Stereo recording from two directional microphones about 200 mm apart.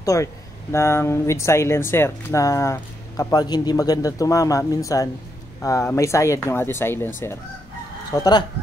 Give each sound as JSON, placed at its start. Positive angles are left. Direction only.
{"t": 0.0, "sound": "speech", "side_deg": 15}
{"t": 8.1, "sound": "speech", "side_deg": 20}